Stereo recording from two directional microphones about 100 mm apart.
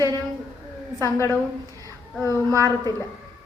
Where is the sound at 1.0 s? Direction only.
30° left (ahead or behind).